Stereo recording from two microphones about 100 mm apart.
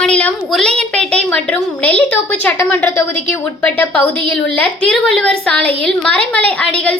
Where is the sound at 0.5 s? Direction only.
5° left (ahead or behind).